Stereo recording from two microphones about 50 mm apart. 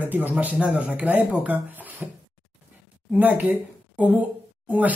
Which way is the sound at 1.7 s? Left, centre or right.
Right.